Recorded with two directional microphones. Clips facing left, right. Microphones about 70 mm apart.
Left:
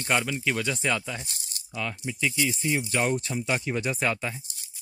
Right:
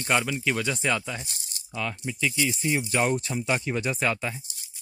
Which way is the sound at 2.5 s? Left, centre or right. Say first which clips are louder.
Right 1 dB; centre.